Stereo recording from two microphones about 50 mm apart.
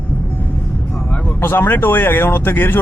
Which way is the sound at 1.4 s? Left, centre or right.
Left.